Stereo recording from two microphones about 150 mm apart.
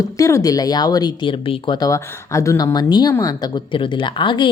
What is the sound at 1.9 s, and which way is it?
A woman's voice, 20° left (ahead or behind).